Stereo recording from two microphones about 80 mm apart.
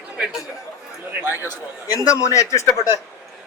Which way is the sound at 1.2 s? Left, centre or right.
Right.